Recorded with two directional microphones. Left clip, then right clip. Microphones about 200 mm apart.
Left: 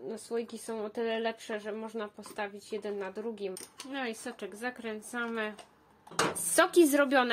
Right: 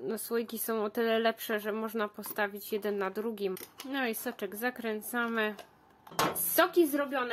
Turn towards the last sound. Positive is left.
turn(degrees=50)  # may be behind; listen again after turning